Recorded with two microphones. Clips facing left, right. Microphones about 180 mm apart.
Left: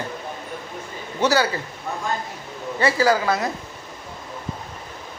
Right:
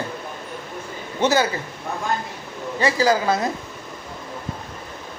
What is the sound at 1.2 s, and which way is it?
Speech, 25° right (ahead or behind).